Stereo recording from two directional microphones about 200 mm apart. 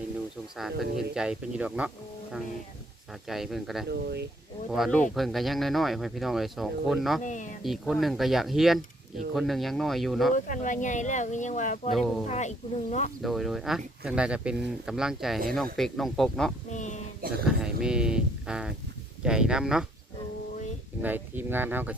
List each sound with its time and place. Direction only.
0.5 s speech: centre (ahead or behind)
3.2 s speech: centre (ahead or behind)
3.8 s speech: 55° right (ahead or behind)
4.7 s speech: centre (ahead or behind)
7.3 s speech: 40° left (ahead or behind)
7.6 s speech: centre (ahead or behind)
10.3 s speech: 40° left (ahead or behind)
11.9 s speech: centre (ahead or behind)
12.3 s speech: 35° left (ahead or behind)
13.2 s speech: centre (ahead or behind)
16.6 s speech: 35° left (ahead or behind)
17.4 s speech: 5° right (ahead or behind)
21.0 s speech: 10° right (ahead or behind)